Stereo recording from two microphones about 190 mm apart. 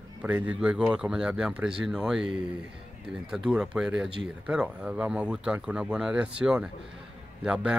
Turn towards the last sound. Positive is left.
turn(degrees=-5)  # may be behind; listen again after turning